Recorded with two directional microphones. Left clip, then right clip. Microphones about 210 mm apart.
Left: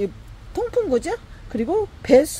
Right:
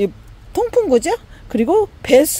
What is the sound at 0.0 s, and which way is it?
Speech, 40° right (ahead or behind).